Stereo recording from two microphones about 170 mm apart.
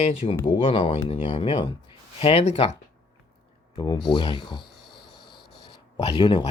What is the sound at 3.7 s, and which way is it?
Speech, 25° left (ahead or behind).